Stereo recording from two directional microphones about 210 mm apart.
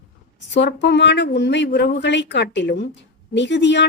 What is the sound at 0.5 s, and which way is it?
Speech, 55° left (ahead or behind).